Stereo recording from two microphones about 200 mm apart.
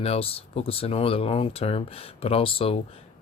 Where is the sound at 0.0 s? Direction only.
30° left (ahead or behind).